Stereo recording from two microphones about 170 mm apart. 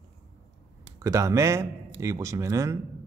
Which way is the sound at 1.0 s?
20° right (ahead or behind).